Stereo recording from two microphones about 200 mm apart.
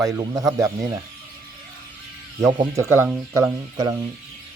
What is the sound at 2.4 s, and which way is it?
Speech, 15° right (ahead or behind).